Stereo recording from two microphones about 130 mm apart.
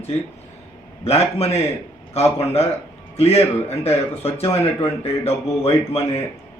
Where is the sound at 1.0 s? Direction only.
50° left (ahead or behind).